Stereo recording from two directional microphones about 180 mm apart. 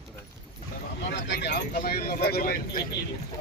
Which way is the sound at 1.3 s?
70° left (ahead or behind).